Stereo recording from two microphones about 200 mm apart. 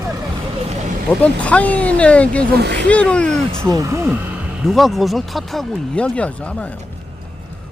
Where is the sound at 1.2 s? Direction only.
5° left (ahead or behind).